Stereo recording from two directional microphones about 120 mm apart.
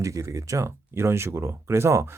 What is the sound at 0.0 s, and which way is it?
Speech, 25° right (ahead or behind).